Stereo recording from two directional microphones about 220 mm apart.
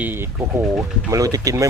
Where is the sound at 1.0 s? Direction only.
15° right (ahead or behind).